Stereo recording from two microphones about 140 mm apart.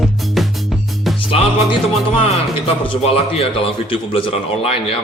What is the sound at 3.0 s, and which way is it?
A man's voice, 45° left (ahead or behind).